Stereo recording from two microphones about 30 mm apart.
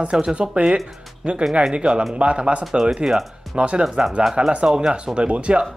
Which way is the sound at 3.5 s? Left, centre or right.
Right.